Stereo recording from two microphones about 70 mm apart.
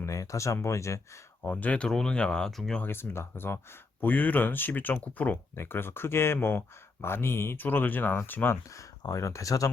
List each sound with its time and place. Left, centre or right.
0.0 s speech: left
1.5 s speech: left
1.9 s speech: centre
2.8 s speech: left
8.7 s speech: left